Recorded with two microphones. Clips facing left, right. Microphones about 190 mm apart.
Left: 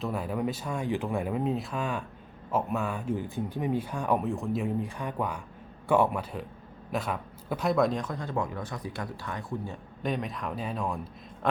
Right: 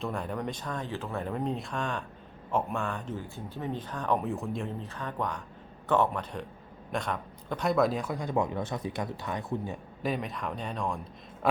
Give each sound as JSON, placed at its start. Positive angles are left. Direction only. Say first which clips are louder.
{"t": 0.0, "sound": "speech", "louder": "left 3 dB", "side_deg": 5}
{"t": 4.3, "sound": "speech", "louder": "left 3 dB", "side_deg": 0}
{"t": 4.6, "sound": "speech", "louder": "left 5 dB", "side_deg": 10}
{"t": 10.0, "sound": "speech", "louder": "left 1 dB", "side_deg": 0}